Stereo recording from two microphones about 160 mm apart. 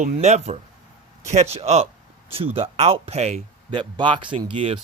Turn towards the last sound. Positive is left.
turn(degrees=-35)  # may be behind; listen again after turning